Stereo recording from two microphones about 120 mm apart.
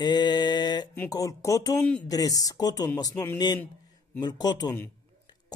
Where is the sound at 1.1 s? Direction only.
30° left (ahead or behind).